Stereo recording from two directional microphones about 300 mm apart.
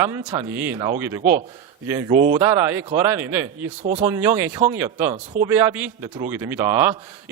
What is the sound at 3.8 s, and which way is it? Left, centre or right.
Speech, right.